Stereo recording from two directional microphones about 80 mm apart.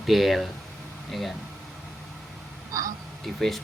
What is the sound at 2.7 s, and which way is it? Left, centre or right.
Speech, right.